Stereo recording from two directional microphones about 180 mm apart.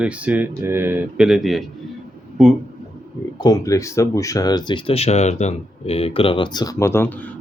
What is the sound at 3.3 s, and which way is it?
Speech, 20° left (ahead or behind).